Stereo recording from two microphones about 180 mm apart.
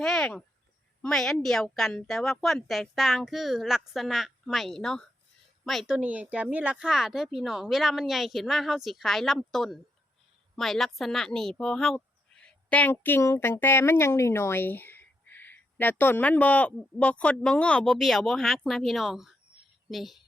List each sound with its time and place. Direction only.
0.0 s a woman's voice: 5° left (ahead or behind)